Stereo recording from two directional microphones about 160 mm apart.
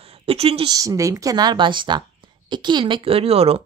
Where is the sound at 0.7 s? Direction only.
20° right (ahead or behind); by 3.6 s 40° right (ahead or behind).